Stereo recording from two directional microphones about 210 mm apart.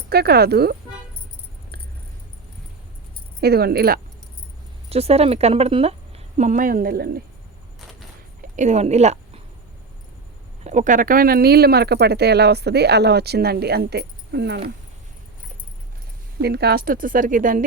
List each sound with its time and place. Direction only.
0.1 s speech: 50° right (ahead or behind)
3.4 s speech: 50° right (ahead or behind)
4.9 s a woman's voice: 30° right (ahead or behind); by 7.2 s 45° right (ahead or behind)
8.4 s a woman's voice: 35° right (ahead or behind)
10.6 s speech: 35° right (ahead or behind); by 14.6 s 50° right (ahead or behind)
16.4 s a woman's voice: 50° right (ahead or behind)